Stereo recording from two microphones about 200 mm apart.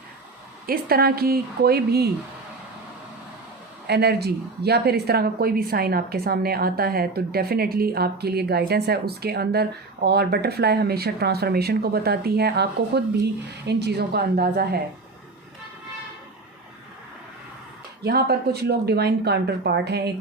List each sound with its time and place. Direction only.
0.7 s speech: 50° right (ahead or behind)
3.8 s speech: 55° right (ahead or behind)
18.0 s speech: 55° right (ahead or behind)